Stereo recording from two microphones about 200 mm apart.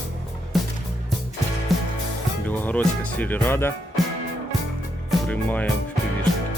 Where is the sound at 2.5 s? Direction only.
10° left (ahead or behind).